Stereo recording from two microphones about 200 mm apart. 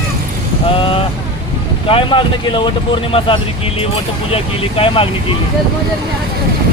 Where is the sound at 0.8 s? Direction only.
25° left (ahead or behind).